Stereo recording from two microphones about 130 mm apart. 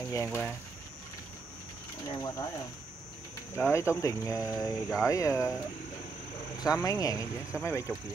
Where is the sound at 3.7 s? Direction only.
20° left (ahead or behind).